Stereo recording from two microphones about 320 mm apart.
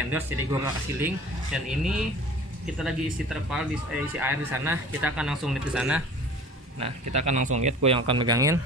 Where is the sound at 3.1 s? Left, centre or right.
Centre.